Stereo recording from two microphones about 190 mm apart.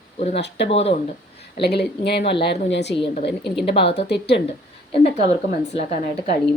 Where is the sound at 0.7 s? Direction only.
35° left (ahead or behind).